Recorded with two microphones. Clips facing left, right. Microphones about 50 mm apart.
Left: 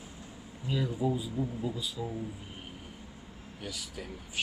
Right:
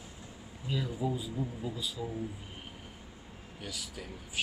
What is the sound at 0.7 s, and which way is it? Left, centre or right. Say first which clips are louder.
Speech: left 3 dB; centre.